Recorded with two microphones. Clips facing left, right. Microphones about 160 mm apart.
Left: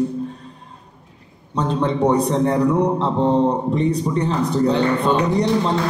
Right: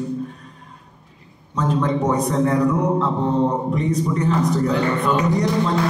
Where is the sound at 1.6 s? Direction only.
30° left (ahead or behind).